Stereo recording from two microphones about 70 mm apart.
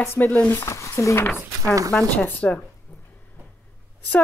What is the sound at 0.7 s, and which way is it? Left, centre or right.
Speech, left.